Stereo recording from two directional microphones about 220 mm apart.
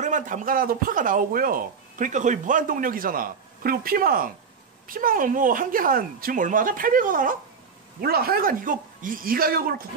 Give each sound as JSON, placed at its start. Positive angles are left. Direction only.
{"t": 0.0, "sound": "speech", "side_deg": -35}